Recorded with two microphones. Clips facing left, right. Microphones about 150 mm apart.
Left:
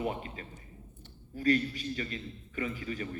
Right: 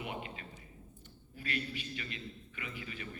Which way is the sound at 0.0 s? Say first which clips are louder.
Left 7 dB; 40° left (ahead or behind).